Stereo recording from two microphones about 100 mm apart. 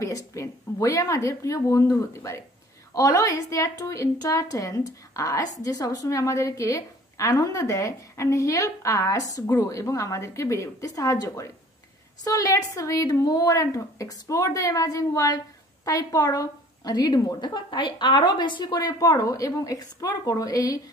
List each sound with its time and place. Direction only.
0.0 s a woman's voice: 30° left (ahead or behind)